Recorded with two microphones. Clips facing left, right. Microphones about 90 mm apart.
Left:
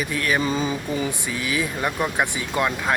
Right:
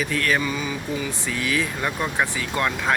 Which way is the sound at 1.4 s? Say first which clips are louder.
Even; 10° left (ahead or behind).